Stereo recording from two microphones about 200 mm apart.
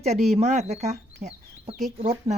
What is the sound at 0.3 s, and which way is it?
Speech, 35° right (ahead or behind).